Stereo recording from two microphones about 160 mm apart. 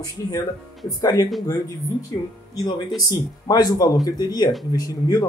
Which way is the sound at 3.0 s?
25° left (ahead or behind).